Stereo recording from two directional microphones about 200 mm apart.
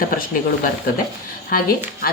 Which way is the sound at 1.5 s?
45° left (ahead or behind).